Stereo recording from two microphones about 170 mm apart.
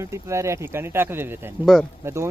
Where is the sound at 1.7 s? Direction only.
Centre (ahead or behind).